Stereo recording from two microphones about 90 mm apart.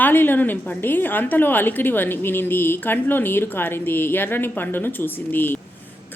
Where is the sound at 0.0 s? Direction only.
20° left (ahead or behind).